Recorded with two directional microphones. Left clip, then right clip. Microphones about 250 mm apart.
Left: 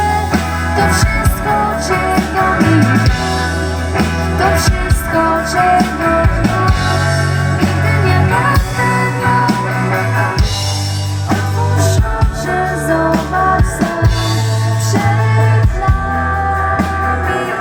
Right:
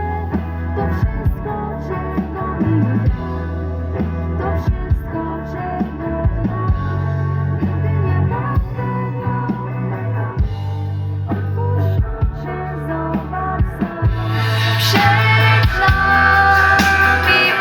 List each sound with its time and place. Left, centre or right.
0.8 s music: left
7.6 s music: left
12.5 s music: left
14.9 s music: left